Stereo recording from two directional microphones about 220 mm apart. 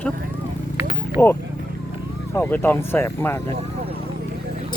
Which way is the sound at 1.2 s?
10° left (ahead or behind).